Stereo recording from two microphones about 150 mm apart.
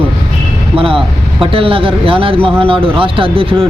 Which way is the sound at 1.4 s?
35° right (ahead or behind).